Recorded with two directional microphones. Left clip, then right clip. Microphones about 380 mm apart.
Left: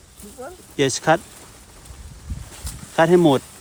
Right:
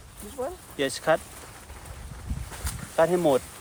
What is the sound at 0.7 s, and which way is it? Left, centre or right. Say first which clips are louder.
Speech: left 9 dB; centre.